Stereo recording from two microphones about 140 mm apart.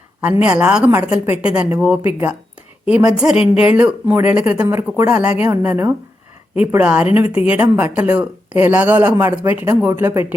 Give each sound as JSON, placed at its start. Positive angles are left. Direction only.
{"t": 0.2, "sound": "a woman's voice", "side_deg": -10}